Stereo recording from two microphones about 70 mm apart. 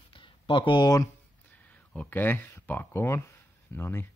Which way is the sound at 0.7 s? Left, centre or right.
Left.